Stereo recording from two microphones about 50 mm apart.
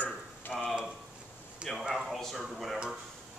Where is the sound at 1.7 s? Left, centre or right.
Centre.